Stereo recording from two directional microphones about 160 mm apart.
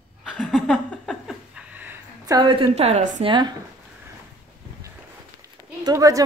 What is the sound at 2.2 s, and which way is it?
A woman's voice, 25° right (ahead or behind).